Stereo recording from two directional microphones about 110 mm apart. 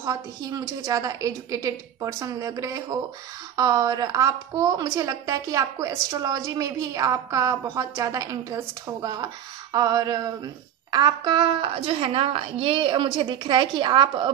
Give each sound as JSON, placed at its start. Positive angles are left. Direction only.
{"t": 0.0, "sound": "a woman's voice", "side_deg": -30}